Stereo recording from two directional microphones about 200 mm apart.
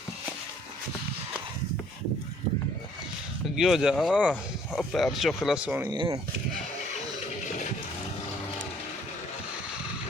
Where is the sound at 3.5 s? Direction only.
Centre (ahead or behind).